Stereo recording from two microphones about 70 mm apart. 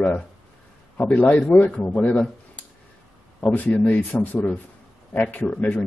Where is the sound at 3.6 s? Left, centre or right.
Left.